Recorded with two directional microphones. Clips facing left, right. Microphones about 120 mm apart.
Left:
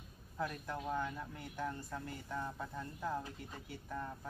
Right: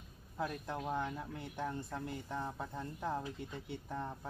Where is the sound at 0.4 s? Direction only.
20° right (ahead or behind).